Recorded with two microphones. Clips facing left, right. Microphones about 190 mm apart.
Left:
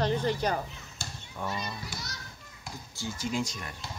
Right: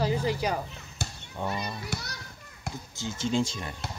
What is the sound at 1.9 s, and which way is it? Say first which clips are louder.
Speech: right 6 dB; 70° right (ahead or behind).